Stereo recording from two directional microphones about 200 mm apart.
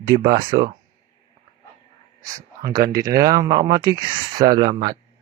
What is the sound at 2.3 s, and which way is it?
Speech, 20° right (ahead or behind).